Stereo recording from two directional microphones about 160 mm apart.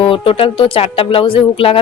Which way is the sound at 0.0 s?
35° left (ahead or behind).